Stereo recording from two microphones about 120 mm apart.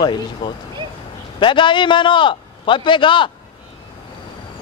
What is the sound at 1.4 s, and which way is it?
A man's voice, 40° left (ahead or behind).